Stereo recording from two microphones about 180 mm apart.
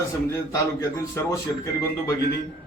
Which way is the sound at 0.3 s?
15° left (ahead or behind).